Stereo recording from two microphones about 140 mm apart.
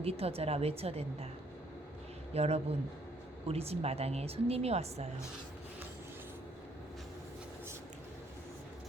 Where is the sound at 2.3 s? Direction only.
50° right (ahead or behind).